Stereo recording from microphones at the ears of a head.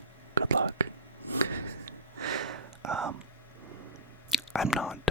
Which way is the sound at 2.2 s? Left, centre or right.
Right.